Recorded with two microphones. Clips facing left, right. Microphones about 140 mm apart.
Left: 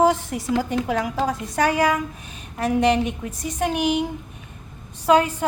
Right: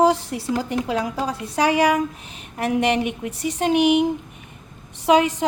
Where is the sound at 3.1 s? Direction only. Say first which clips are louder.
Right 3 dB; 70° right (ahead or behind).